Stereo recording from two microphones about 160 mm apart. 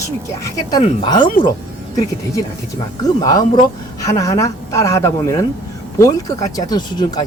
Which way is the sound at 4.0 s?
20° left (ahead or behind).